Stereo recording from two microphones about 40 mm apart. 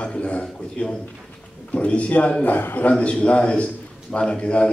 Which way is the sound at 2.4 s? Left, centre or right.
Left.